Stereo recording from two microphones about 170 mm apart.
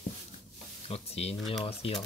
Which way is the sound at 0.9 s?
35° left (ahead or behind).